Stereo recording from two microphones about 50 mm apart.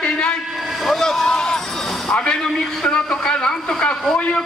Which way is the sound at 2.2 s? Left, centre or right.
Centre.